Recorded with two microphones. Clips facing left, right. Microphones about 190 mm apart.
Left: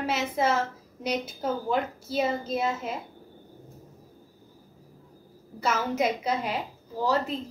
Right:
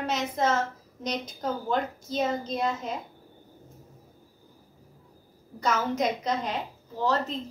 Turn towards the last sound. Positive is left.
turn(degrees=10)  # may be behind; listen again after turning